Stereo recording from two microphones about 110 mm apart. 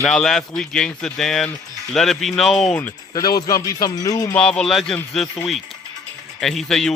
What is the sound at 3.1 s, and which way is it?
Speech, 35° left (ahead or behind).